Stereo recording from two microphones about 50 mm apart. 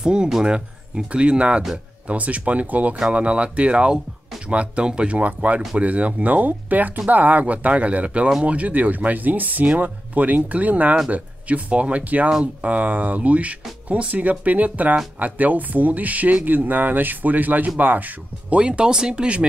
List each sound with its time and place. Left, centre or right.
0.0 s speech: centre; by 18.6 s right
18.6 s speech: right